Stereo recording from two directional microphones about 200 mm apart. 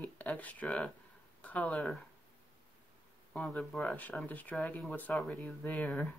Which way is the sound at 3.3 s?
5° left (ahead or behind).